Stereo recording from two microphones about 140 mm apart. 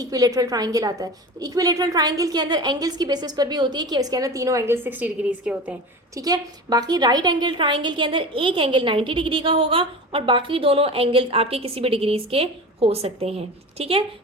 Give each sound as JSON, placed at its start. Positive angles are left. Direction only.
{"t": 0.0, "sound": "a woman's voice", "side_deg": -25}
{"t": 6.1, "sound": "a woman's voice", "side_deg": -30}